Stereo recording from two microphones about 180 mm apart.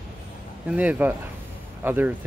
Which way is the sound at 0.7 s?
10° right (ahead or behind).